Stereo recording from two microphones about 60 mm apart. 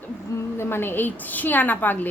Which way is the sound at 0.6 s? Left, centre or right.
Left.